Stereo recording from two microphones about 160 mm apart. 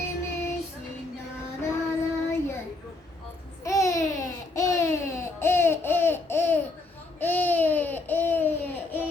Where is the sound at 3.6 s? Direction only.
20° left (ahead or behind).